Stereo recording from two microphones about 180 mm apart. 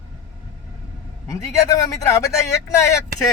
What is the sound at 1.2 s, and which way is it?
Speech, 20° left (ahead or behind).